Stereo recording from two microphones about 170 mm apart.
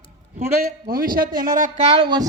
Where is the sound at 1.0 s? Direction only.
55° right (ahead or behind).